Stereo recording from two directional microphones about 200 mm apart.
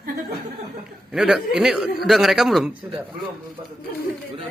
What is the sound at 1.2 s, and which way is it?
Speech, 5° right (ahead or behind).